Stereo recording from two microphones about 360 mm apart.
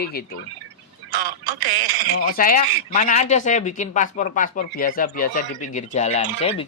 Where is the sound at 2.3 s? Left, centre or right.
Left.